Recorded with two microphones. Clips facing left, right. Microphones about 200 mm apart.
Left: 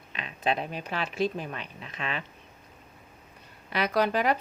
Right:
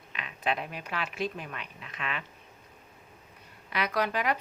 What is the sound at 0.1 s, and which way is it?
Speech, 30° left (ahead or behind).